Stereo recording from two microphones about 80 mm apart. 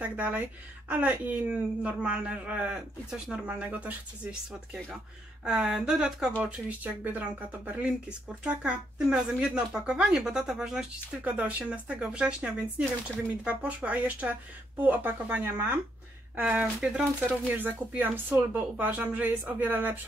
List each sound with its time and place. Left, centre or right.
0.0 s speech: centre
5.4 s speech: centre
6.4 s speech: centre
11.2 s speech: centre
16.3 s speech: centre
17.6 s speech: right